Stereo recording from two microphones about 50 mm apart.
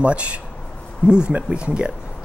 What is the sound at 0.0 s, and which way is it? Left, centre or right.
Speech, right.